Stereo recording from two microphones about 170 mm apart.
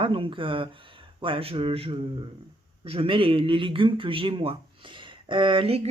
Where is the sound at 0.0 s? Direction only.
30° right (ahead or behind).